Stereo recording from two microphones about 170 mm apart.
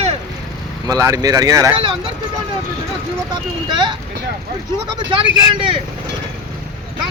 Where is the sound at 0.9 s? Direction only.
20° right (ahead or behind).